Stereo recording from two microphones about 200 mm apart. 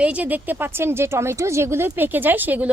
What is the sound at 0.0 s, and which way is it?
A woman's voice, 5° right (ahead or behind).